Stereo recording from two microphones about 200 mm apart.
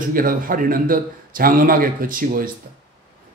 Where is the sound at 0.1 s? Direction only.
45° right (ahead or behind).